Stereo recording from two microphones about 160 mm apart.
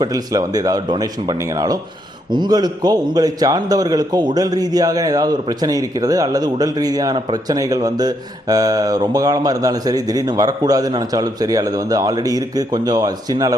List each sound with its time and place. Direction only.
0.0 s a man's voice: 25° right (ahead or behind)